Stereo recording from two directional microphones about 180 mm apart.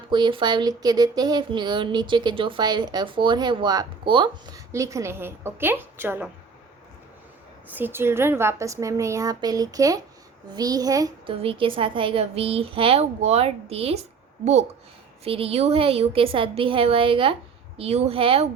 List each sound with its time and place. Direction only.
0.1 s speech: 25° right (ahead or behind); by 6.2 s 10° right (ahead or behind)
7.7 s a woman's voice: 10° right (ahead or behind); by 14.0 s 35° right (ahead or behind)
15.2 s speech: 30° right (ahead or behind)